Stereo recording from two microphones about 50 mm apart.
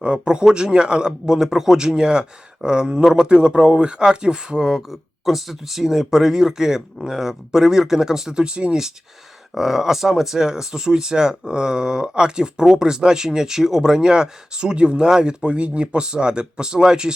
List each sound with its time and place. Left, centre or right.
0.0 s speech: centre
9.6 s speech: centre